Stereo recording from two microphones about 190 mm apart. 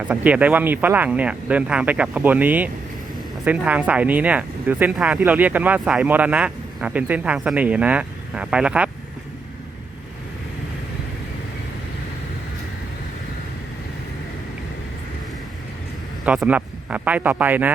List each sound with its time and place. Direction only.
0.0 s speech: 10° right (ahead or behind)
16.2 s speech: 5° right (ahead or behind)